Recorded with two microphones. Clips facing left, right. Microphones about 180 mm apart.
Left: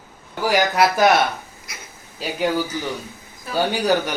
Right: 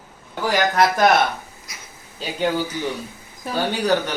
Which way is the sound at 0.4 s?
10° left (ahead or behind).